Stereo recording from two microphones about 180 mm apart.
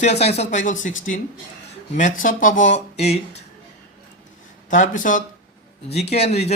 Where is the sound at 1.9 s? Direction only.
45° left (ahead or behind).